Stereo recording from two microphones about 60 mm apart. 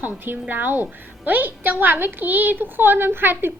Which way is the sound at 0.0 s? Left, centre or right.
Right.